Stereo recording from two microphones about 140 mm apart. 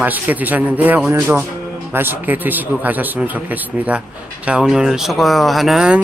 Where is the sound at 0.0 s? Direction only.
10° right (ahead or behind).